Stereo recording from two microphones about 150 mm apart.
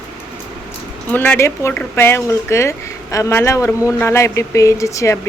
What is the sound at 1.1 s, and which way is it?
Speech, 10° left (ahead or behind).